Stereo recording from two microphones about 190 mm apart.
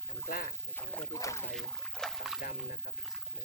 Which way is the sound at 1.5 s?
Centre (ahead or behind).